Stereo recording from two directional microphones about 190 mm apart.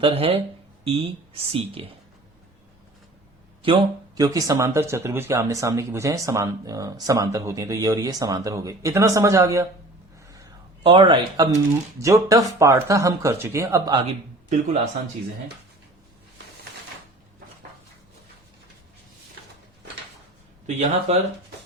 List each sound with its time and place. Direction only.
0.0 s speech: 30° right (ahead or behind)
3.6 s speech: 25° right (ahead or behind)
10.3 s a sound: 20° right (ahead or behind)
11.9 s speech: 15° right (ahead or behind)
20.7 s speech: 35° right (ahead or behind)